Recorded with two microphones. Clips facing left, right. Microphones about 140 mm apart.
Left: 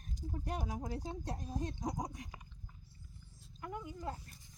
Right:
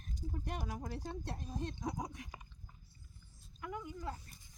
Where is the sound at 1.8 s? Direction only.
40° left (ahead or behind).